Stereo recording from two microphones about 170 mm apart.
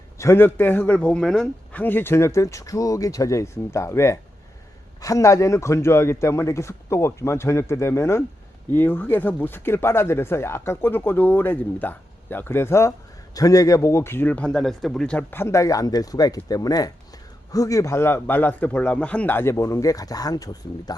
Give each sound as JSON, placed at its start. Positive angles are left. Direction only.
{"t": 0.2, "sound": "a man's voice", "side_deg": 15}